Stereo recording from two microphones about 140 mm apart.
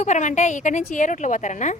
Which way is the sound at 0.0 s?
60° left (ahead or behind).